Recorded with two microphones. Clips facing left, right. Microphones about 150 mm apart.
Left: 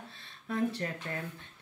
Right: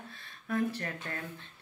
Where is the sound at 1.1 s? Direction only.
15° left (ahead or behind).